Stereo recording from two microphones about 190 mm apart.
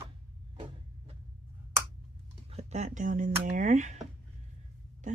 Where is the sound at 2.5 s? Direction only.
35° right (ahead or behind).